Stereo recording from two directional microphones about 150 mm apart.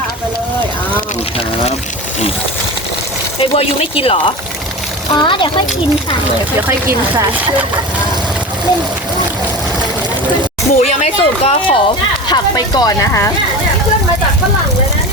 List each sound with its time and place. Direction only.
3.5 s speech: 40° left (ahead or behind)
6.6 s speech: 15° right (ahead or behind)
10.8 s speech: 45° left (ahead or behind)
12.3 s speech: 25° left (ahead or behind)